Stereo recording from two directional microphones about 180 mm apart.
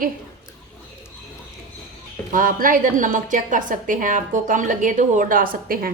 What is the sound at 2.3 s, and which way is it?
A woman's voice, 50° right (ahead or behind).